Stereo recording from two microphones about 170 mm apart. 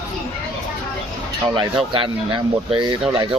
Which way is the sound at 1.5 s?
30° right (ahead or behind).